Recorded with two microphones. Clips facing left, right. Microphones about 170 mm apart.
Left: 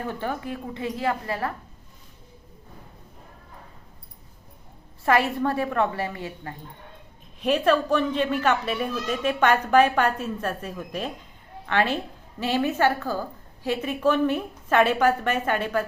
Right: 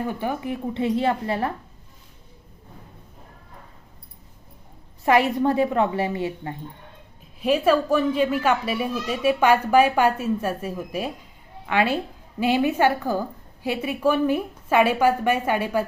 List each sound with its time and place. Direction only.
0.1 s a woman's voice: 15° right (ahead or behind)
5.0 s a woman's voice: 15° right (ahead or behind)
7.4 s a woman's voice: 10° right (ahead or behind)